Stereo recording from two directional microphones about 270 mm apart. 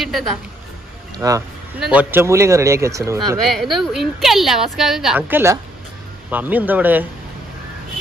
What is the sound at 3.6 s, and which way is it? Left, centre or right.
Speech, centre.